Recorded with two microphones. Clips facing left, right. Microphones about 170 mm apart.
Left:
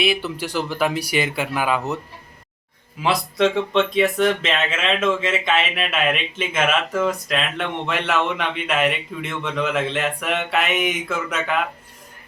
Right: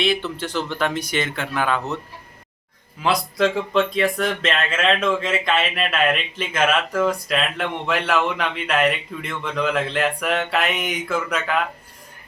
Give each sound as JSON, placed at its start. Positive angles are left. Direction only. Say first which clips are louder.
{"t": 0.0, "sound": "speech", "louder": "even", "side_deg": 10}
{"t": 3.0, "sound": "speech", "louder": "left 1 dB", "side_deg": 0}